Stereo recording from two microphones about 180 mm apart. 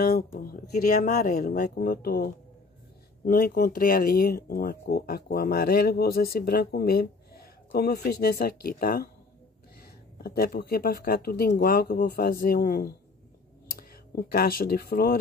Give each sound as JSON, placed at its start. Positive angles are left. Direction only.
{"t": 0.4, "sound": "speech", "side_deg": 55}
{"t": 10.1, "sound": "speech", "side_deg": 60}